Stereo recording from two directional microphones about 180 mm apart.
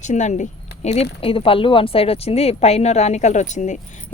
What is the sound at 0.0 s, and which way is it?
Speech, 40° left (ahead or behind).